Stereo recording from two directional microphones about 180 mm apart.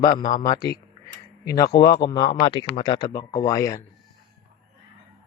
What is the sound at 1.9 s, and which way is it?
Speech, 25° left (ahead or behind).